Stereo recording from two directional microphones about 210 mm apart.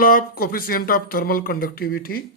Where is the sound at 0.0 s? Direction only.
45° left (ahead or behind).